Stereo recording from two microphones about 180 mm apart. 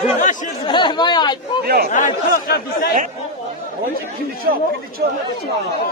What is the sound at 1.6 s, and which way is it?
Speech, 60° right (ahead or behind).